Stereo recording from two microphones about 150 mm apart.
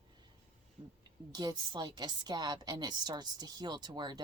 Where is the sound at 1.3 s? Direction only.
30° right (ahead or behind).